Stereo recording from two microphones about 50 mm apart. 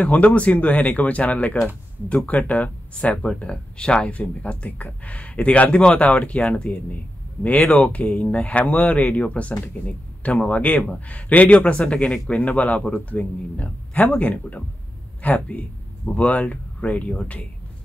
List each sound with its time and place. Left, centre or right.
0.0 s a man's voice: left